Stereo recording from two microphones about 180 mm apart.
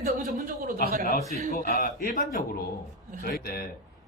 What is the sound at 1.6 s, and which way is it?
A man's voice, 50° left (ahead or behind).